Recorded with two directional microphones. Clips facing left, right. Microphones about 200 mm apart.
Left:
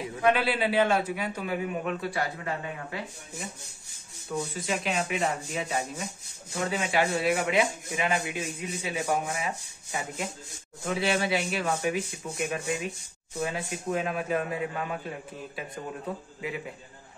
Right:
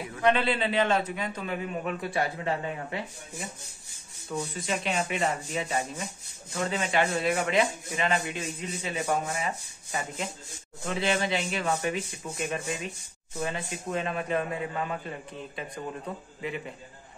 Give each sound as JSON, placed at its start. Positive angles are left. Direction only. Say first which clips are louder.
{"t": 0.2, "sound": "speech", "louder": "even", "side_deg": 5}
{"t": 2.0, "sound": "speech", "louder": "right 1 dB", "side_deg": -20}
{"t": 4.4, "sound": "a man's voice", "louder": "left 1 dB", "side_deg": 0}